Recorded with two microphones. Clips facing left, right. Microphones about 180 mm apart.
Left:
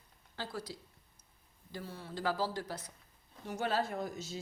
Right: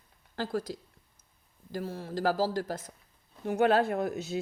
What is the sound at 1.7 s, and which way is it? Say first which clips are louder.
Speech: right 8 dB; 45° right (ahead or behind).